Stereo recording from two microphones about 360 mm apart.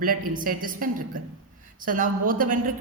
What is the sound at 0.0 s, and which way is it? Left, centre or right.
A woman's voice, right.